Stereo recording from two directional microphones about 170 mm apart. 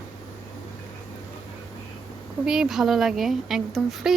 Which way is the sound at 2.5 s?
5° right (ahead or behind).